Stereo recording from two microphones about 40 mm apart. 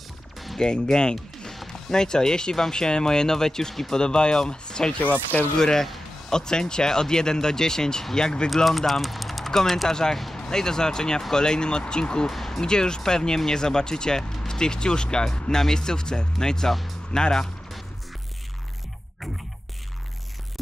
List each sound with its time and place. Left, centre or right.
0.6 s speech: left
8.6 s speech: centre; by 12.3 s left
12.3 s a sound: centre
12.6 s speech: centre